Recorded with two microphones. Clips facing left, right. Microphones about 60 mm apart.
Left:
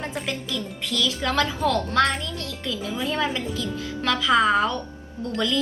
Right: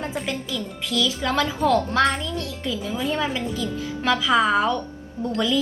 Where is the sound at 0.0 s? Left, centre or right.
Centre.